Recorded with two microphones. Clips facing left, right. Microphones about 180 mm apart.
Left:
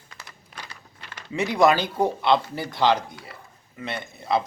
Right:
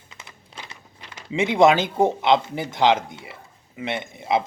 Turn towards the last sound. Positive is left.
turn(degrees=-20)  # may be behind; listen again after turning